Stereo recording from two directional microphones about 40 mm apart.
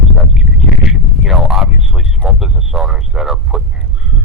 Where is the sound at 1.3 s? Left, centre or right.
Centre.